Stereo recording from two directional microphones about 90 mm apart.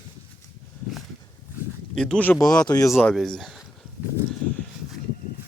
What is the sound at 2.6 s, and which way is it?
Speech, 45° left (ahead or behind).